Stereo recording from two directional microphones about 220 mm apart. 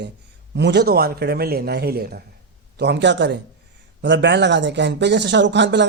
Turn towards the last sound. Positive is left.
turn(degrees=-55)  # may be behind; listen again after turning